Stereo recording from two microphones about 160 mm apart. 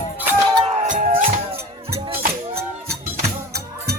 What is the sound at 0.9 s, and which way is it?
Music, 55° right (ahead or behind).